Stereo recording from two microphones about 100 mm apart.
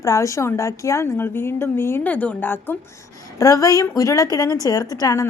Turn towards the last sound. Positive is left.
turn(degrees=35)  # may be behind; listen again after turning